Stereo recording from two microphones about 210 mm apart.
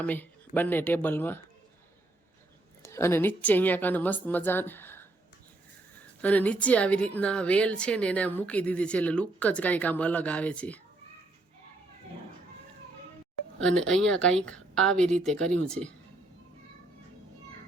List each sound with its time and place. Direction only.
0.0 s a woman's voice: 10° left (ahead or behind)
2.8 s a woman's voice: 15° left (ahead or behind)
6.2 s a woman's voice: 5° left (ahead or behind)
13.6 s a woman's voice: 5° left (ahead or behind)